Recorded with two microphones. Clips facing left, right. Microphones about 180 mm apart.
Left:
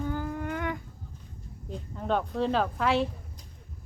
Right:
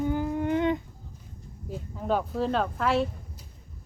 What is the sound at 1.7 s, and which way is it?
Speech, 5° right (ahead or behind).